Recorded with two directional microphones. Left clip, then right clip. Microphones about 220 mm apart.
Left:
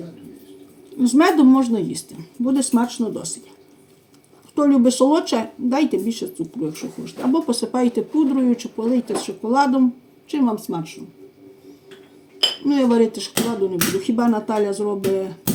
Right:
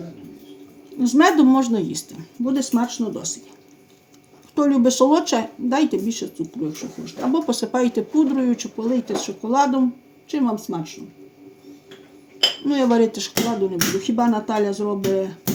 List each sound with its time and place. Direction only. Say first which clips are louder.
0.9 s speech: even; 15° right (ahead or behind)
4.5 s speech: left 1 dB; 15° right (ahead or behind)
12.6 s speech: left 2 dB; 15° right (ahead or behind)
13.3 s a sound: even; 20° left (ahead or behind)
14.2 s speech: even; 15° right (ahead or behind)